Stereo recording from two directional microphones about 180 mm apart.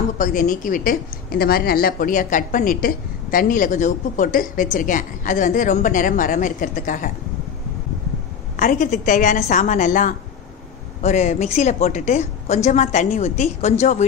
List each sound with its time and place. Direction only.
0.2 s a woman's voice: 45° left (ahead or behind)
8.5 s a woman's voice: 50° left (ahead or behind)